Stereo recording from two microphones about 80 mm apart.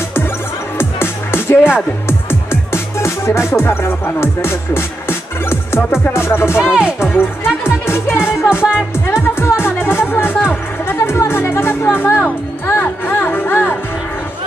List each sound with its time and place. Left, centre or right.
0.7 s music: left
6.6 s speech: centre
7.0 s speech: left
7.6 s music: left